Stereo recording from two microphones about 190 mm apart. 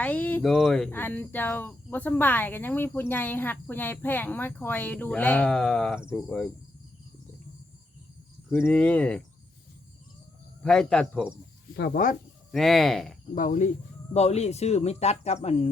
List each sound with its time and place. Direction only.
0.0 s speech: 10° left (ahead or behind)
8.4 s speech: 10° left (ahead or behind)
10.6 s speech: 5° left (ahead or behind)
11.8 s speech: 45° left (ahead or behind)
12.5 s speech: centre (ahead or behind)
13.3 s speech: 45° left (ahead or behind)